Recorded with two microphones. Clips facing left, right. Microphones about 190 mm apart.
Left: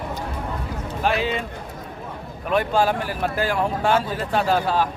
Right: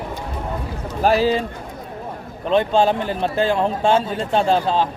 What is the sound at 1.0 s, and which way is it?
Speech, 40° right (ahead or behind).